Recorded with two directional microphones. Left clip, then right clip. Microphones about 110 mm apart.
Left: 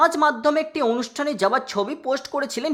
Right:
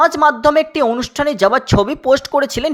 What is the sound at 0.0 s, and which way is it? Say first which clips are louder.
Speech: right 6 dB; 35° right (ahead or behind).